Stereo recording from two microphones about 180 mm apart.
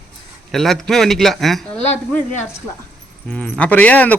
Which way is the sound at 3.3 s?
10° left (ahead or behind).